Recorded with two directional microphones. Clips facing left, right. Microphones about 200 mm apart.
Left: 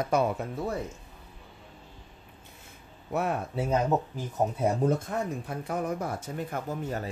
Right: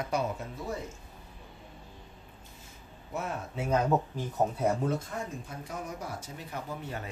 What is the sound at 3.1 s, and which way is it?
Speech, 65° left (ahead or behind).